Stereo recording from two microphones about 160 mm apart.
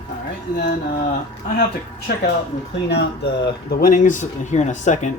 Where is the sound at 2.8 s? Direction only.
90° left.